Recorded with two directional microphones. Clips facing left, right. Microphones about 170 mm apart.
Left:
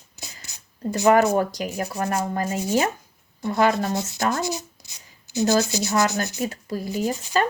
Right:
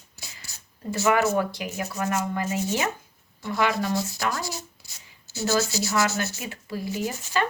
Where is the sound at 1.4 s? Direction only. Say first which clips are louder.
Left 3 dB; 40° left (ahead or behind).